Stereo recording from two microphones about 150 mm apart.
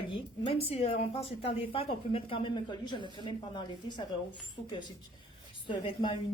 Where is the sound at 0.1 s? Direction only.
40° left (ahead or behind).